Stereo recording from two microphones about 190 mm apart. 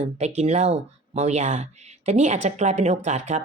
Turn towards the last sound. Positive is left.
turn(degrees=-35)  # may be behind; listen again after turning